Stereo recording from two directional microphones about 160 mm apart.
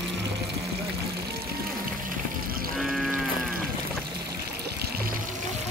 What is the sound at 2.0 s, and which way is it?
Music, 65° right (ahead or behind).